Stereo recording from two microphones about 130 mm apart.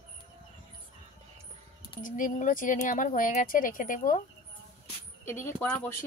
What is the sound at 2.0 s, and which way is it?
Speech, 90° left.